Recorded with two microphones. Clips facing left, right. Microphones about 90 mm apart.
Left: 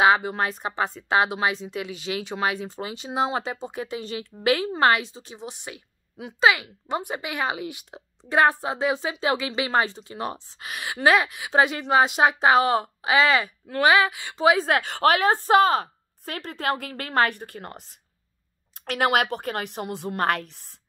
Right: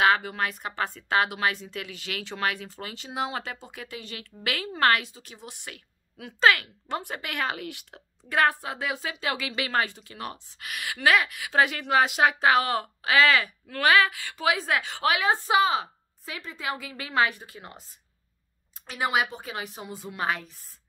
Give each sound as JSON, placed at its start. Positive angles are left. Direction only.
{"t": 0.0, "sound": "speech", "side_deg": 20}
{"t": 14.7, "sound": "a woman's voice", "side_deg": 55}
{"t": 18.9, "sound": "a woman's voice", "side_deg": 70}